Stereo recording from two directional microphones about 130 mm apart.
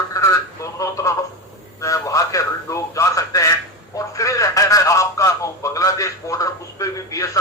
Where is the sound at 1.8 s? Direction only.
25° left (ahead or behind).